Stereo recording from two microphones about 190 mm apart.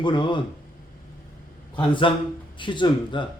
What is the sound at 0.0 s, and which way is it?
Speech, 25° left (ahead or behind).